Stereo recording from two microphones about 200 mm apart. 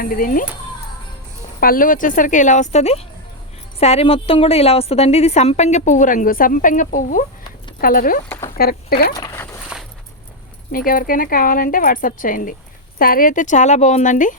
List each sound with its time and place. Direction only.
0.0 s speech: 45° left (ahead or behind)
1.6 s a woman's voice: 45° left (ahead or behind)
9.1 s a sound: 15° left (ahead or behind)
10.7 s a woman's voice: 45° left (ahead or behind)